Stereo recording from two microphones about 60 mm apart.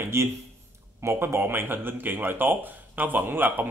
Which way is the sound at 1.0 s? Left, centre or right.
Right.